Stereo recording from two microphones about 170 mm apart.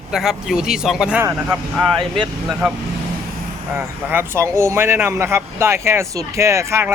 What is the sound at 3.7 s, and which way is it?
Speech, 10° right (ahead or behind).